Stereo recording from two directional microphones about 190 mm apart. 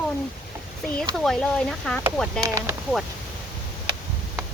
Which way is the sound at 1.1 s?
Centre (ahead or behind).